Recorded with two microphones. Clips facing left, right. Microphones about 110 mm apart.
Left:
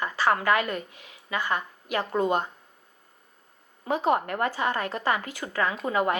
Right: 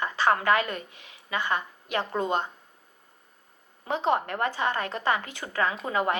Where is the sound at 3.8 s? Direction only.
25° right (ahead or behind).